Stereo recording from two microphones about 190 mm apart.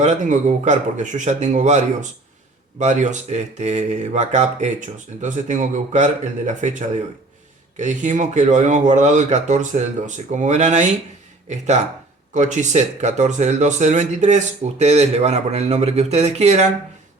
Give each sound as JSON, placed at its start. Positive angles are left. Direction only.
{"t": 0.0, "sound": "speech", "side_deg": -40}